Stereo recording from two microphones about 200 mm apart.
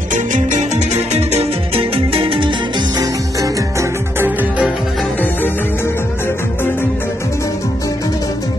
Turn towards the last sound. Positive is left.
turn(degrees=10)  # may be behind; listen again after turning